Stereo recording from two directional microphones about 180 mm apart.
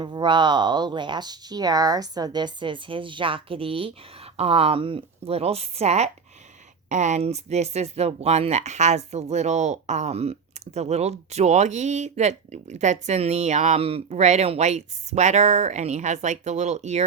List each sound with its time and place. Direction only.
0.0 s speech: 25° right (ahead or behind)